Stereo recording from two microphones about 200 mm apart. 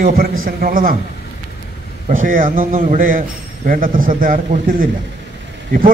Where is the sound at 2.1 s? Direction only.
45° right (ahead or behind).